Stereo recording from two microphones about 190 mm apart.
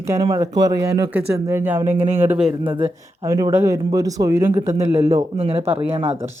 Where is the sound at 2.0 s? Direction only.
35° right (ahead or behind); by 5.2 s 15° right (ahead or behind).